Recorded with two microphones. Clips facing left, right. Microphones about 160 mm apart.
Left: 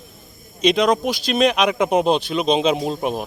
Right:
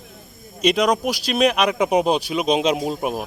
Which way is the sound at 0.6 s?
10° right (ahead or behind).